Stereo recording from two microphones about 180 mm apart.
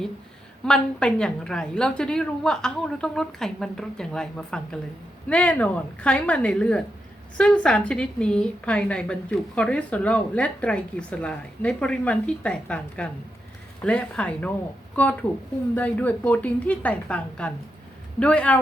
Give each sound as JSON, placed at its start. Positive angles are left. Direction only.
{"t": 0.6, "sound": "a woman's voice", "side_deg": 5}
{"t": 15.7, "sound": "speech", "side_deg": 10}